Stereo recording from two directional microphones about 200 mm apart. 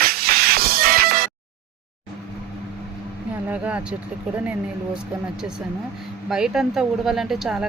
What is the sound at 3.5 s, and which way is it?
Speech, 5° right (ahead or behind).